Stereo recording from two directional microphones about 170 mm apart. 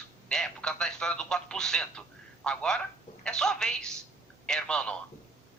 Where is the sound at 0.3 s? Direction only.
5° left (ahead or behind).